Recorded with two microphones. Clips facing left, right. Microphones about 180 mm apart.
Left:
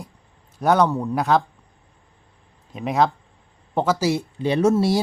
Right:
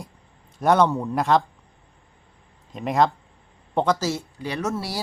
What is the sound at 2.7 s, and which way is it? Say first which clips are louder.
Speech: even; centre (ahead or behind).